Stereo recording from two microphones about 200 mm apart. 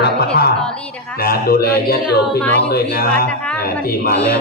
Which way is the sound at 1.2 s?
50° left (ahead or behind).